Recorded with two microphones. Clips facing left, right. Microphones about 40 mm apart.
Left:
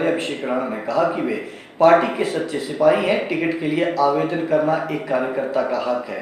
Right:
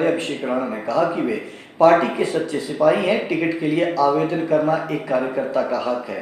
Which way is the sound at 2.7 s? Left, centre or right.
Centre.